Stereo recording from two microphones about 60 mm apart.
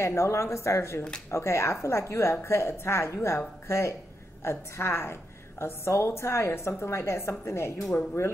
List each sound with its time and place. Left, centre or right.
0.0 s a woman's voice: left